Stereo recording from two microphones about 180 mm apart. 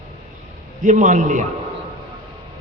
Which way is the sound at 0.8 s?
45° right (ahead or behind).